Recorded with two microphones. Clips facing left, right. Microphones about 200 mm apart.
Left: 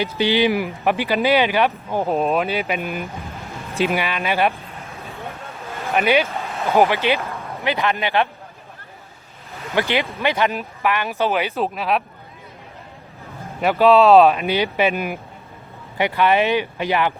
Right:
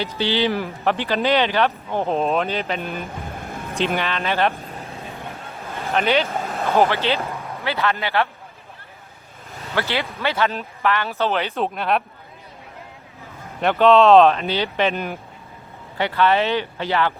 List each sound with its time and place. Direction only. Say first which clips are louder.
0.2 s speech: left 3 dB; 15° left (ahead or behind)
5.9 s speech: left 2 dB; 10° left (ahead or behind)
9.7 s speech: left 3 dB; 15° left (ahead or behind)
13.6 s speech: left 1 dB; 5° left (ahead or behind)